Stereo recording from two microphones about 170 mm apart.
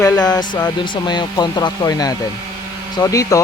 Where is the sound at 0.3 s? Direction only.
25° left (ahead or behind).